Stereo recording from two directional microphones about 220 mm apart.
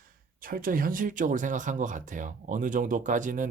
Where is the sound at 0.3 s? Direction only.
40° right (ahead or behind).